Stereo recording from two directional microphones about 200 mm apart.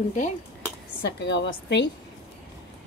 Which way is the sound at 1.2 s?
60° left (ahead or behind).